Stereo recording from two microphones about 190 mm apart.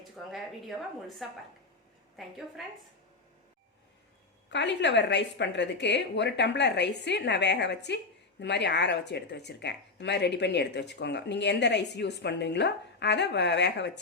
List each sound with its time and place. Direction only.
1.2 s a woman's voice: centre (ahead or behind)
4.5 s speech: 65° left (ahead or behind)